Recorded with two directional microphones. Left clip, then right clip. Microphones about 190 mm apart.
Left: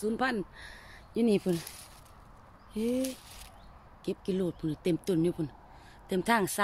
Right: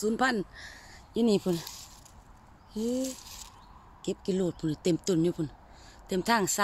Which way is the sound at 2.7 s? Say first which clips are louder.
Even; 10° right (ahead or behind).